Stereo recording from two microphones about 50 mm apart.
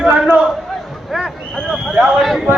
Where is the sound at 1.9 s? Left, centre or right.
Centre.